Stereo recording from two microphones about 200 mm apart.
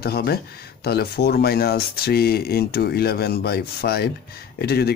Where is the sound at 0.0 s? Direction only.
50° left (ahead or behind).